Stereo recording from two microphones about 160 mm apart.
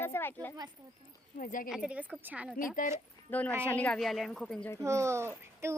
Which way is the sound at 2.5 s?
55° left (ahead or behind).